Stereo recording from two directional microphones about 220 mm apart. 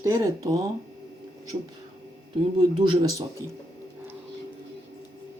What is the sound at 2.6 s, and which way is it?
Speech, 15° right (ahead or behind).